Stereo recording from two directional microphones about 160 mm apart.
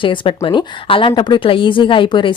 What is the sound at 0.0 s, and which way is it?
A woman's voice, 30° left (ahead or behind).